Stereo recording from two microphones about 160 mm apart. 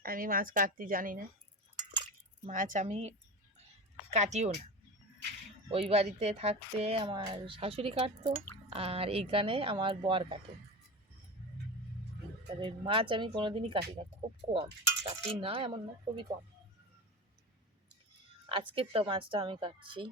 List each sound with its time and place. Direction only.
0.0 s a woman's voice: 65° right (ahead or behind)
2.4 s a woman's voice: 55° right (ahead or behind)
5.9 s speech: 40° right (ahead or behind)
12.5 s speech: 30° right (ahead or behind)
18.7 s speech: 35° right (ahead or behind)